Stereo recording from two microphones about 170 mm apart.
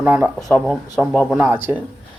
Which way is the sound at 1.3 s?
10° right (ahead or behind).